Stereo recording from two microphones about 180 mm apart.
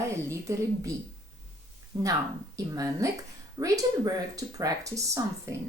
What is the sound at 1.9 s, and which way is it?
Speech, 25° right (ahead or behind).